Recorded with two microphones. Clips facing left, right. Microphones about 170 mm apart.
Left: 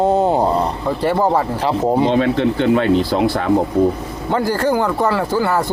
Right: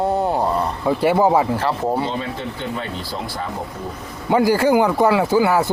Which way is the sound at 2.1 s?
75° left (ahead or behind).